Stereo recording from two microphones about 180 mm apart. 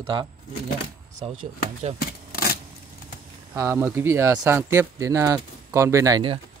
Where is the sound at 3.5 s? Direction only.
15° right (ahead or behind).